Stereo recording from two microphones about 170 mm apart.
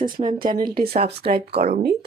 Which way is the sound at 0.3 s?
60° right (ahead or behind).